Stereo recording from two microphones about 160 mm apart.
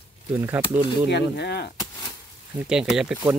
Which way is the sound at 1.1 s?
90° left.